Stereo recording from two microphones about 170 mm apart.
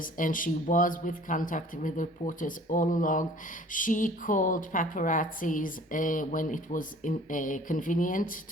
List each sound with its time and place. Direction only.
0.0 s a woman's voice: 55° left (ahead or behind)